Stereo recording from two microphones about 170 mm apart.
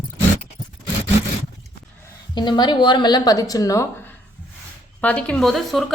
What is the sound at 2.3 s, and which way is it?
Speech, 25° left (ahead or behind).